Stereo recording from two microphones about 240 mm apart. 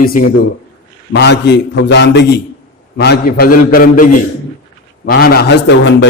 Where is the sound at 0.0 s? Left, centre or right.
Left.